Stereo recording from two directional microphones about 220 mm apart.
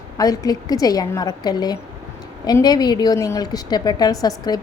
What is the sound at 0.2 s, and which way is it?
A woman's voice, 15° left (ahead or behind).